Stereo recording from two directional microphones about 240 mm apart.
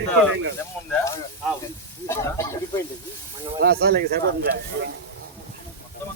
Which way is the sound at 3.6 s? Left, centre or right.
Right.